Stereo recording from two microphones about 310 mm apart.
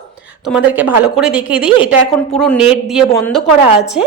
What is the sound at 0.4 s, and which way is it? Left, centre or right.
A woman's voice, centre.